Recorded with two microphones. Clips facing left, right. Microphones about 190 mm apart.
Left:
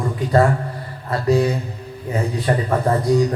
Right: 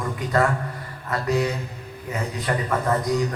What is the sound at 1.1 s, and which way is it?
Speech, 30° left (ahead or behind).